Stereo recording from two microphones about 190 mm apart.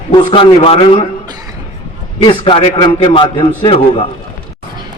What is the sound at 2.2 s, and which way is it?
A man's voice, 25° left (ahead or behind).